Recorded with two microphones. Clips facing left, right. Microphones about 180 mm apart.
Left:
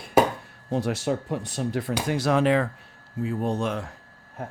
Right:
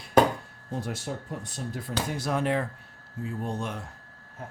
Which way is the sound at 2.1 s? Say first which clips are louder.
Left 7 dB; 85° left.